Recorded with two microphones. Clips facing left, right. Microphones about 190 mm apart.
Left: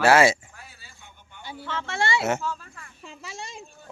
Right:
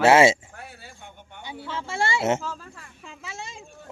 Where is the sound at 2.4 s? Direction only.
40° right (ahead or behind).